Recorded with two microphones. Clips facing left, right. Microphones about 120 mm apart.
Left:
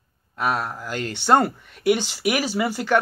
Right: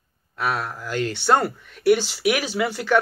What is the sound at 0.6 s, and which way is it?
A man's voice, 15° left (ahead or behind).